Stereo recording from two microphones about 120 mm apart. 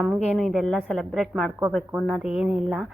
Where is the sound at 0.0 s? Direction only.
Centre (ahead or behind).